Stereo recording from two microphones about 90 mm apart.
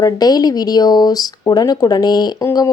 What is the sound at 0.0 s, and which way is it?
Speech, 50° left (ahead or behind).